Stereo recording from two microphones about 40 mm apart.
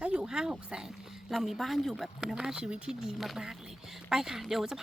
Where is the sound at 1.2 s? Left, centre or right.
Centre.